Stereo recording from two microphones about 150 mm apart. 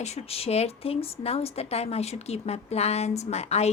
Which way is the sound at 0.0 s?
45° left (ahead or behind).